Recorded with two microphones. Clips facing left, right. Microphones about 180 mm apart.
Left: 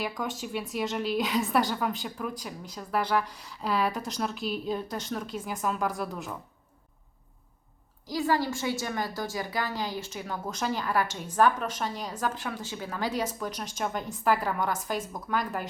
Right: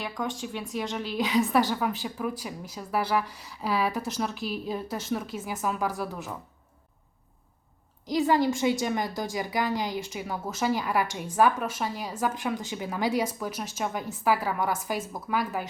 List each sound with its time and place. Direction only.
0.0 s a woman's voice: 5° left (ahead or behind)
8.0 s a woman's voice: 20° right (ahead or behind)